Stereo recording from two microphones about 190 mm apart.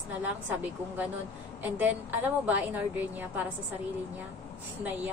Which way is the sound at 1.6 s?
10° right (ahead or behind).